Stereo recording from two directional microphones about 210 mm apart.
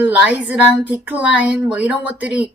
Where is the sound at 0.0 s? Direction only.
5° right (ahead or behind).